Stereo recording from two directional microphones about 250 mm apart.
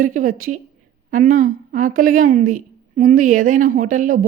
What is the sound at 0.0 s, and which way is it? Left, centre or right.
A woman's voice, right.